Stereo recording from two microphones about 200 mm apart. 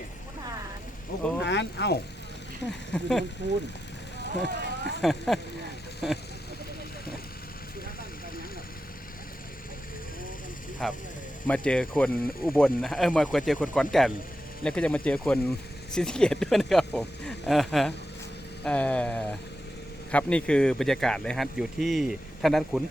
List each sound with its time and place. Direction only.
1.4 s speech: 60° left (ahead or behind)
2.6 s speech: centre (ahead or behind)
4.4 s speech: 55° right (ahead or behind)
5.0 s speech: centre (ahead or behind)
10.8 s speech: centre (ahead or behind)